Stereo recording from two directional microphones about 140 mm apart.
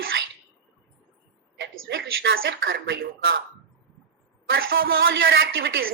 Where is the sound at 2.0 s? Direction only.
90° right.